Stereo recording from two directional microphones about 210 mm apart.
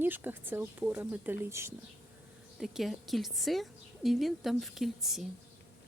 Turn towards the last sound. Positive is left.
turn(degrees=0)  # may be behind; listen again after turning